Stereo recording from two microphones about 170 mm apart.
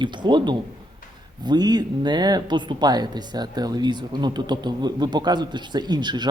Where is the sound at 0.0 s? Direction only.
25° right (ahead or behind).